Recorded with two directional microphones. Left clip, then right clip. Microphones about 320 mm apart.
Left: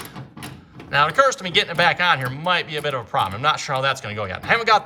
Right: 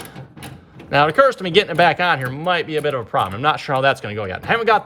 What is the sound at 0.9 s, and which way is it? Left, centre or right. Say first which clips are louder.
Speech: right 3 dB; centre.